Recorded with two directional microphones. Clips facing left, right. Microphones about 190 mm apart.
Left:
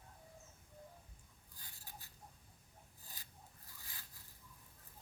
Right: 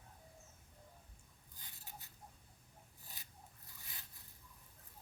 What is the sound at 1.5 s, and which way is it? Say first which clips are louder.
Writing: right 1 dB; 20° right (ahead or behind).